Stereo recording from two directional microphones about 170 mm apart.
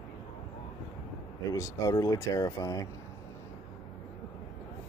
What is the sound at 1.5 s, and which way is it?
Speech, 20° left (ahead or behind).